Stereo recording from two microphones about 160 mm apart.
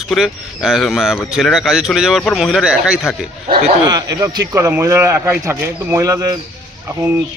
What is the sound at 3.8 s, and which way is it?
A man's voice, 25° right (ahead or behind).